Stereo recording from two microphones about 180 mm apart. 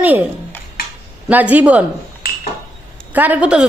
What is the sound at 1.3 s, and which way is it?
Speech, 10° right (ahead or behind).